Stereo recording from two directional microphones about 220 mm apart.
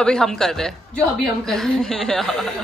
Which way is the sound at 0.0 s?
5° left (ahead or behind).